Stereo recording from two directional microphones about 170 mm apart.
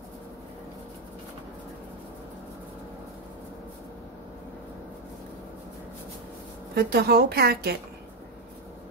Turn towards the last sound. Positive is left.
turn(degrees=-70)  # may be behind; listen again after turning